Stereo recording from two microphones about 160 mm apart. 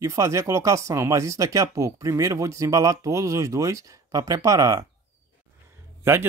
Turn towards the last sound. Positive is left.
turn(degrees=-15)  # may be behind; listen again after turning